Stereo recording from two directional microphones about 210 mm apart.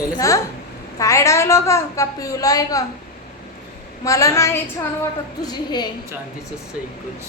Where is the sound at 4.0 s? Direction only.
15° left (ahead or behind).